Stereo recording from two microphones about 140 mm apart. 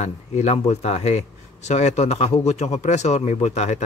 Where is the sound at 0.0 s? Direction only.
55° left (ahead or behind).